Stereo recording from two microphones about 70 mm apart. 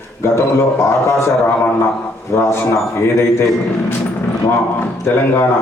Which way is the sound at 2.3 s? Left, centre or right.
Left.